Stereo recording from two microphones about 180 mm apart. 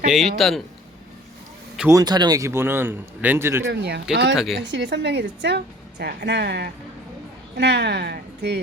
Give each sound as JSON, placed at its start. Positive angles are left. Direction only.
{"t": 0.1, "sound": "a man's voice", "side_deg": 0}
{"t": 1.9, "sound": "speech", "side_deg": -20}
{"t": 3.7, "sound": "a woman's voice", "side_deg": -70}